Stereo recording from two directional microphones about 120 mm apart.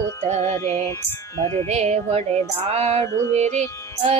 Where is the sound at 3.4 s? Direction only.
70° right (ahead or behind).